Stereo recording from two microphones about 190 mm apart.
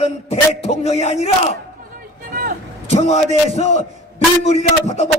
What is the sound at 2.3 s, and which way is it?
Vehicle, 50° right (ahead or behind).